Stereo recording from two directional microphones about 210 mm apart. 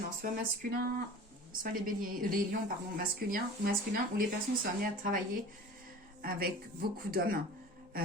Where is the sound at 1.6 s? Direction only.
40° right (ahead or behind).